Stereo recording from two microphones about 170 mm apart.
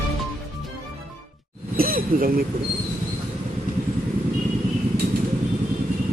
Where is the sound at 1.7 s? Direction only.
60° right (ahead or behind).